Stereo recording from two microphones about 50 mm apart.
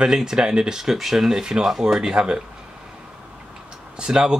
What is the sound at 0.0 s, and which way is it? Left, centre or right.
Speech, centre.